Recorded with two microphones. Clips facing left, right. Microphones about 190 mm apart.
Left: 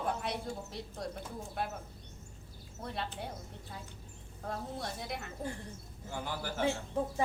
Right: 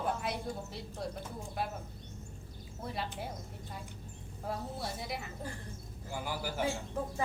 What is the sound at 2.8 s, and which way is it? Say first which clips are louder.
Speech: even; centre (ahead or behind).